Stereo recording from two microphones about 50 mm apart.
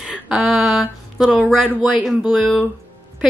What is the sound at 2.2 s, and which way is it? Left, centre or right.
Speech, right.